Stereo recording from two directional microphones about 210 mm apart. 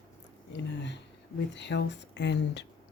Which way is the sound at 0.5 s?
55° left (ahead or behind).